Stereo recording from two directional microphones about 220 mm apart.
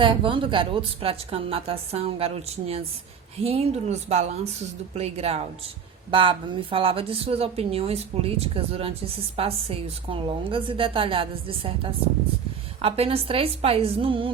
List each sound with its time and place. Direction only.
0.0 s a woman's voice: 25° right (ahead or behind)